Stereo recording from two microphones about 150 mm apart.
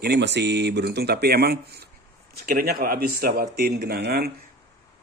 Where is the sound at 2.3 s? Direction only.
80° right.